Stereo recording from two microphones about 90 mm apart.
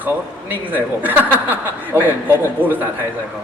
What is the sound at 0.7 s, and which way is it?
Speech, 20° right (ahead or behind).